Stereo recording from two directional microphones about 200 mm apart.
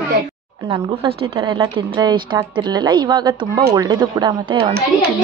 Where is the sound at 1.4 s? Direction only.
25° right (ahead or behind).